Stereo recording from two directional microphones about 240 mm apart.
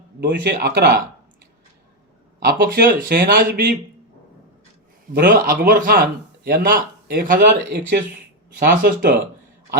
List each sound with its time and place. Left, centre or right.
0.2 s speech: right
2.5 s speech: right
5.1 s speech: right